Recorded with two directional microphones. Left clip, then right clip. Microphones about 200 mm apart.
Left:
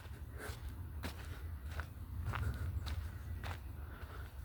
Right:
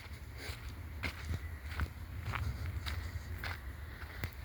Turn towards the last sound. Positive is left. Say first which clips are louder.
# right 6 dB
turn(degrees=0)  # may be behind; listen again after turning